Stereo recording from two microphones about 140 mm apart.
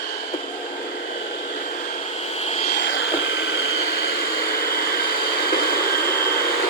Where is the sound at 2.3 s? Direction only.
50° left (ahead or behind).